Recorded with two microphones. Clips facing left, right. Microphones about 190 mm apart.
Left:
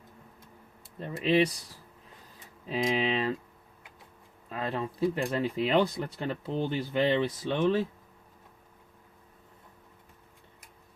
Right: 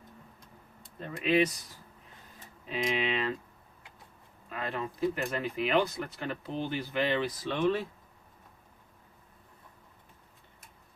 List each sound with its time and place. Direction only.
1.0 s speech: 30° left (ahead or behind)
2.6 s speech: 35° left (ahead or behind)
4.4 s speech: 35° left (ahead or behind)